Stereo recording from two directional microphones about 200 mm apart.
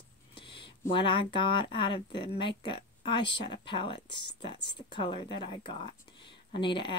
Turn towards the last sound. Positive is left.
turn(degrees=25)  # may be behind; listen again after turning